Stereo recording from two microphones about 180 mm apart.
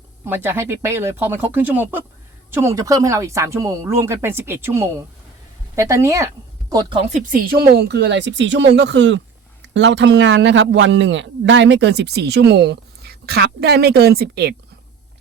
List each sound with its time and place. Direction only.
0.3 s speech: 15° right (ahead or behind)
7.1 s speech: 50° right (ahead or behind)